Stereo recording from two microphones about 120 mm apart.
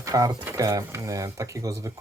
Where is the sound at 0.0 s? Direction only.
30° right (ahead or behind).